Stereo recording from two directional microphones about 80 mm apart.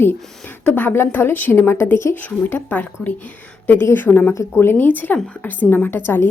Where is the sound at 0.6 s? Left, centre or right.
Left.